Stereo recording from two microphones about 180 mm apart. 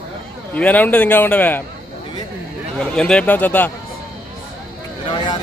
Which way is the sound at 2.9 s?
5° left (ahead or behind).